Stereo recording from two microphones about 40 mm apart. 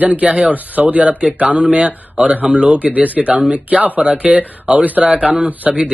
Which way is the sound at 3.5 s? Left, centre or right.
Right.